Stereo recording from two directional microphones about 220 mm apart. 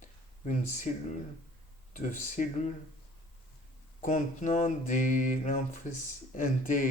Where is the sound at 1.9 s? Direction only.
35° left (ahead or behind).